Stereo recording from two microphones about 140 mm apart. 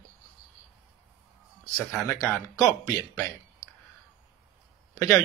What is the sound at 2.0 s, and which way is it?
Speech, 10° left (ahead or behind).